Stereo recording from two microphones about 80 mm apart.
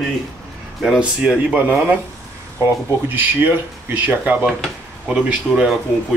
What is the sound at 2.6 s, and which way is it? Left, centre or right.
Speech, right.